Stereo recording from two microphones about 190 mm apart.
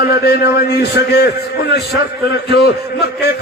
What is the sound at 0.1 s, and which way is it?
Speech, 55° left (ahead or behind).